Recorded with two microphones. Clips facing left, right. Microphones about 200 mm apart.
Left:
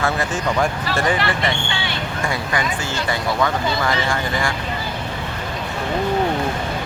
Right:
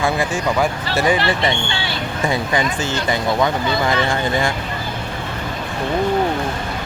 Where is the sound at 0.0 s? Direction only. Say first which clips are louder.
Right 2 dB; 10° right (ahead or behind).